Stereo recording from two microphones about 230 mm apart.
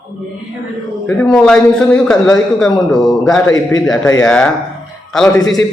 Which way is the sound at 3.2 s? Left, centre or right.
Centre.